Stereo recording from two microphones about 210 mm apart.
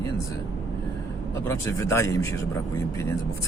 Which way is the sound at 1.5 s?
15° left (ahead or behind).